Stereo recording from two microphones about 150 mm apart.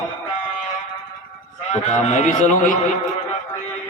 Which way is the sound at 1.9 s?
50° left (ahead or behind).